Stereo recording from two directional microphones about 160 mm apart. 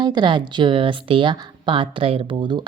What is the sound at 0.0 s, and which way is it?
Speech, 30° right (ahead or behind).